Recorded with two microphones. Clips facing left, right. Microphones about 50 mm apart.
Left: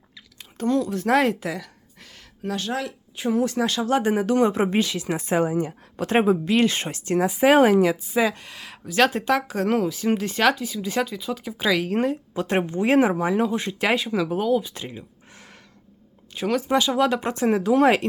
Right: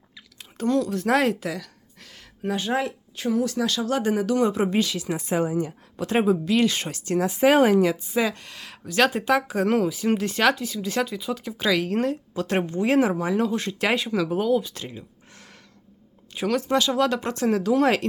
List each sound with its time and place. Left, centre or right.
0.3 s a sound: centre
2.4 s speech: centre
3.2 s a woman's voice: left
5.0 s a woman's voice: left
7.3 s speech: centre
12.3 s speech: left
13.8 s speech: centre
14.7 s a sound: centre
16.3 s speech: centre
16.6 s speech: centre